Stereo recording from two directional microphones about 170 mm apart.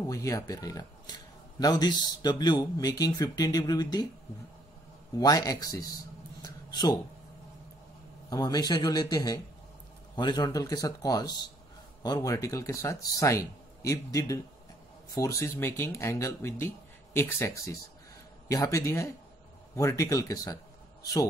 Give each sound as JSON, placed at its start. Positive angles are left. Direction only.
{"t": 0.0, "sound": "speech", "side_deg": 20}
{"t": 5.2, "sound": "speech", "side_deg": 20}
{"t": 8.3, "sound": "speech", "side_deg": 25}
{"t": 18.5, "sound": "speech", "side_deg": 20}